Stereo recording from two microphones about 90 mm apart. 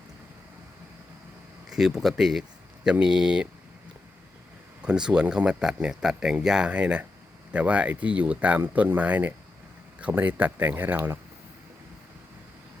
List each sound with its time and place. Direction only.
1.7 s speech: 5° right (ahead or behind)
4.8 s speech: 10° right (ahead or behind)